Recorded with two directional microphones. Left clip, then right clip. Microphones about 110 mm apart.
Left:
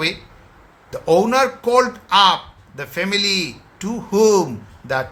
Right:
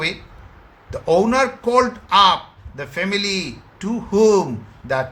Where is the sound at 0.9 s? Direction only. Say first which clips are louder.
Left 1 dB; 20° left (ahead or behind).